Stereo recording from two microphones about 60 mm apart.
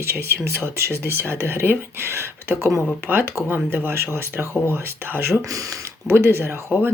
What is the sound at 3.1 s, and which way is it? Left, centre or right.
Speech, right.